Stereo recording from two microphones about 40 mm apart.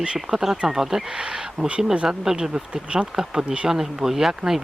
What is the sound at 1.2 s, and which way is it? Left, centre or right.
Speech, right.